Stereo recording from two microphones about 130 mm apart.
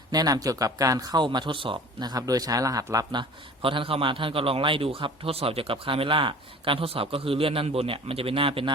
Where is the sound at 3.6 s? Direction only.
45° right (ahead or behind).